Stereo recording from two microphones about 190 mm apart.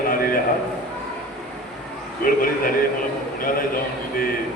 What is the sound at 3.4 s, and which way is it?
Speech, 50° left (ahead or behind).